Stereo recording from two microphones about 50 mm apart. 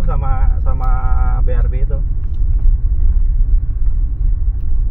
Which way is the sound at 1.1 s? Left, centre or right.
Centre.